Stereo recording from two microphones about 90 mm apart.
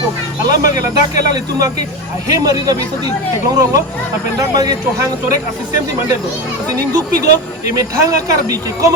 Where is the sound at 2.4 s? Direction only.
45° right (ahead or behind).